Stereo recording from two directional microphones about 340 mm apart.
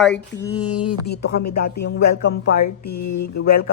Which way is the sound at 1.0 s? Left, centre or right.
Left.